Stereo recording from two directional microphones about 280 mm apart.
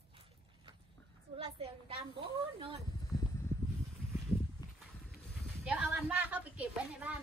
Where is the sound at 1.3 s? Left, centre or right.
Centre.